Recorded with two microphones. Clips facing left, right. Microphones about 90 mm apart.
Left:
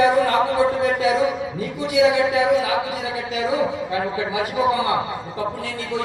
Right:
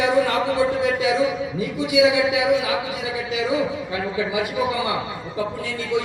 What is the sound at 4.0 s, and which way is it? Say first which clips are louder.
Speech: right 1 dB; 35° left (ahead or behind).